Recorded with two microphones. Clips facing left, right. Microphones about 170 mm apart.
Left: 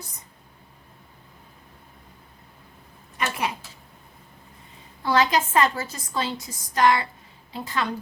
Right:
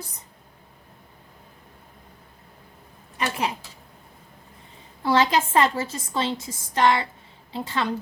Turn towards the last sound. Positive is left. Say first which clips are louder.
# right 2 dB
turn(degrees=-30)  # may be behind; listen again after turning